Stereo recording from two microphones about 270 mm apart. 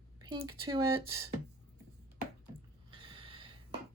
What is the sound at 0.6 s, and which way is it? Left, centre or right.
Speech, centre.